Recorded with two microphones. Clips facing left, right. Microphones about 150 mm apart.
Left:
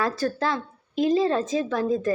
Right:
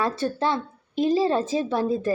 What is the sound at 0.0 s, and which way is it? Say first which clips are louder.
A woman's voice: right 1 dB; 25° right (ahead or behind).